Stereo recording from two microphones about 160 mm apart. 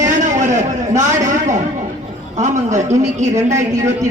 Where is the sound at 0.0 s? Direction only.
50° right (ahead or behind).